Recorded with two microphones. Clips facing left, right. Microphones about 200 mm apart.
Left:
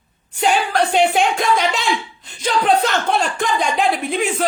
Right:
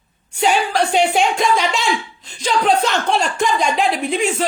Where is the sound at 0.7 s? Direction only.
55° left (ahead or behind).